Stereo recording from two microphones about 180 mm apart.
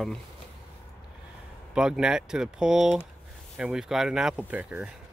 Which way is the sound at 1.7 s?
5° right (ahead or behind).